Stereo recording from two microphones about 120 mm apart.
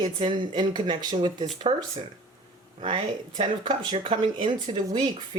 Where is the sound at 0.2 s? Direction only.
40° right (ahead or behind).